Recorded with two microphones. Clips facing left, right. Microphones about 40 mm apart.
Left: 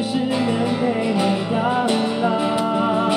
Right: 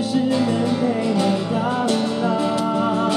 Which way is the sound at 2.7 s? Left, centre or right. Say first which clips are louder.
Left 1 dB; centre.